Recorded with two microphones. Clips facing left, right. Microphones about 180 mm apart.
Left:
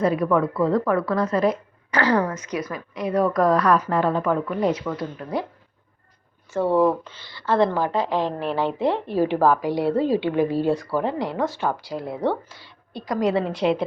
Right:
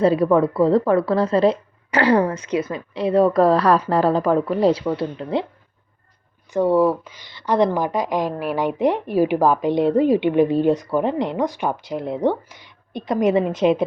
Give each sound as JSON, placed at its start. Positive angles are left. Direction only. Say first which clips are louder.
{"t": 0.0, "sound": "a woman's voice", "louder": "right 4 dB", "side_deg": -30}
{"t": 6.5, "sound": "a woman's voice", "louder": "right 2 dB", "side_deg": -15}